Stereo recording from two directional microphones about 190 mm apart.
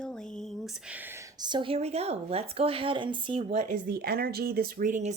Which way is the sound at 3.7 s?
50° right (ahead or behind).